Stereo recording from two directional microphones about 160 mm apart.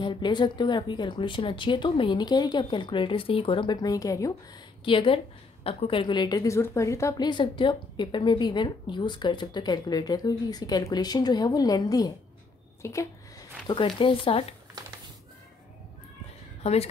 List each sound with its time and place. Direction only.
0.0 s a woman's voice: 30° left (ahead or behind)
4.8 s a woman's voice: 30° left (ahead or behind)
13.7 s speech: 30° left (ahead or behind)
16.6 s speech: 40° left (ahead or behind)